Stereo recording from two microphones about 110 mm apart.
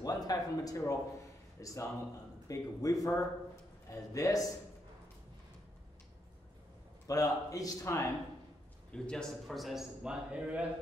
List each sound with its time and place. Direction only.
0.0 s speech: 35° left (ahead or behind)
7.1 s speech: 30° left (ahead or behind)
8.9 s a man's voice: 5° left (ahead or behind); by 10.6 s 10° right (ahead or behind)